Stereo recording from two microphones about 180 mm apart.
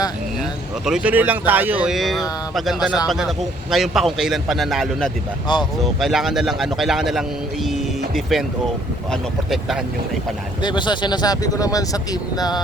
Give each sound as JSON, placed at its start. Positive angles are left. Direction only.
{"t": 0.9, "sound": "a man's voice", "side_deg": -5}
{"t": 9.5, "sound": "a man's voice", "side_deg": 0}
{"t": 10.6, "sound": "speech", "side_deg": 25}